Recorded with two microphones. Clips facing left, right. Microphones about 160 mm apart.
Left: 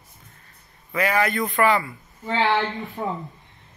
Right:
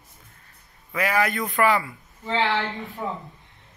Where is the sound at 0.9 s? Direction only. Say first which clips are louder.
Left 1 dB; 5° right (ahead or behind).